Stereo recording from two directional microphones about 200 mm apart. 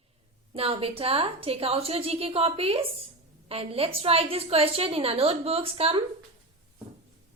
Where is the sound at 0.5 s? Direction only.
30° right (ahead or behind).